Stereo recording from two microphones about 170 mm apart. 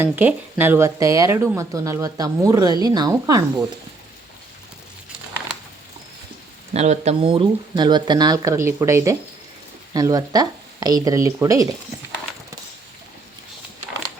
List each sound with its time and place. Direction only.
0.0 s speech: 10° right (ahead or behind)
6.7 s speech: 40° right (ahead or behind); by 11.7 s 20° right (ahead or behind)